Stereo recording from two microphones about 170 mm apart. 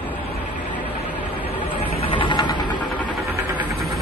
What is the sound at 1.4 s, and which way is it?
Vehicle, 35° left (ahead or behind).